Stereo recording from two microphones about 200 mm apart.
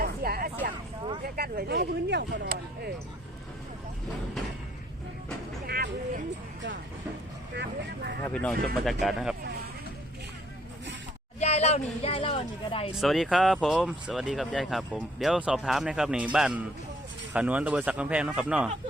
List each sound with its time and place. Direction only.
0.0 s vehicle: 50° right (ahead or behind)
1.2 s speech: 50° right (ahead or behind)
5.6 s music: 50° right (ahead or behind)
7.5 s speech: 60° right (ahead or behind)
8.3 s speech: 5° left (ahead or behind)
11.3 s speech: 30° left (ahead or behind)
12.9 s speech: centre (ahead or behind)